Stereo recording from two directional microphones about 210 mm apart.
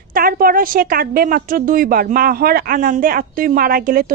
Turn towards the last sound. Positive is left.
turn(degrees=-45)  # may be behind; listen again after turning